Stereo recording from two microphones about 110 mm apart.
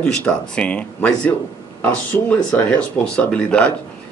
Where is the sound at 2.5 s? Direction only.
15° left (ahead or behind).